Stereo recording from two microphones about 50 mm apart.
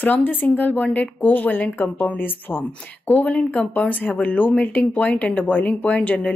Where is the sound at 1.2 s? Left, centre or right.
Left.